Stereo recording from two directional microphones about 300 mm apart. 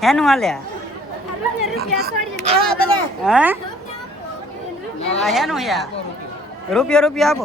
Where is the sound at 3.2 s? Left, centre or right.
Centre.